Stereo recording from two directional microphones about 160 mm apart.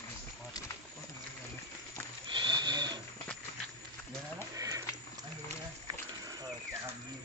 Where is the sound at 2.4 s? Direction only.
25° right (ahead or behind).